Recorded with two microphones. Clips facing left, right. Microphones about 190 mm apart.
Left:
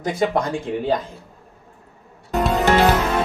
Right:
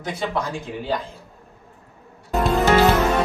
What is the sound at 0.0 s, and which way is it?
Speech, 45° left (ahead or behind).